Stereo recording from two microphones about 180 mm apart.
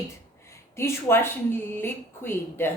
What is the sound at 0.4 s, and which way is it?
A woman's voice, 15° left (ahead or behind).